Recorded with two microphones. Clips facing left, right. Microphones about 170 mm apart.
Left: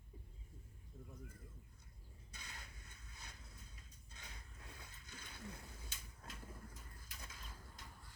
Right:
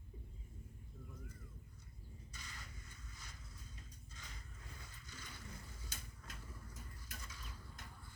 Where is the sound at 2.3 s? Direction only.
60° left (ahead or behind).